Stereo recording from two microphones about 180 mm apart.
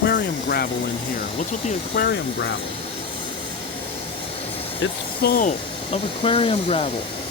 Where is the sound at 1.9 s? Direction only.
70° left (ahead or behind).